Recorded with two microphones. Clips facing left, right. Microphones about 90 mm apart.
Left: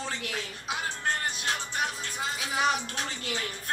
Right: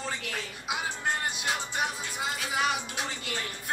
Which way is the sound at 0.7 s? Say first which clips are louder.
Even; 10° right (ahead or behind).